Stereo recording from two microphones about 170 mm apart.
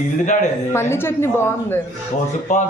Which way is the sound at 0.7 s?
15° left (ahead or behind).